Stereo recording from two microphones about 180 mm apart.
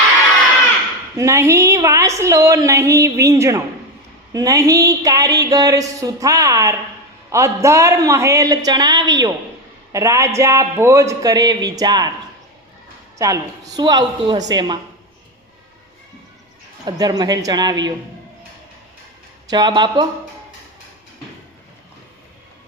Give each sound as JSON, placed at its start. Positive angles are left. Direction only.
{"t": 1.1, "sound": "a woman's voice", "side_deg": -15}
{"t": 13.1, "sound": "speech", "side_deg": -20}
{"t": 16.8, "sound": "speech", "side_deg": -20}
{"t": 19.5, "sound": "speech", "side_deg": -25}